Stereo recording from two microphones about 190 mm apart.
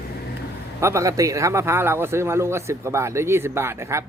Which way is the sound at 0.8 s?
15° right (ahead or behind).